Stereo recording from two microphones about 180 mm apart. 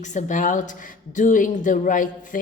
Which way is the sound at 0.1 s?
45° left (ahead or behind).